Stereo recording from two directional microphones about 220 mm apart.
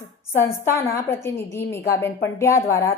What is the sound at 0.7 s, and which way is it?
A woman's voice, 15° left (ahead or behind).